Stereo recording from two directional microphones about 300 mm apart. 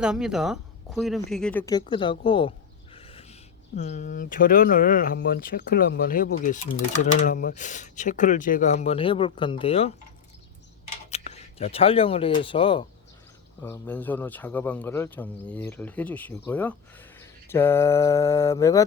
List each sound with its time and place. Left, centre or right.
0.0 s speech: centre
2.9 s owl: centre
3.8 s speech: left
11.1 s speech: left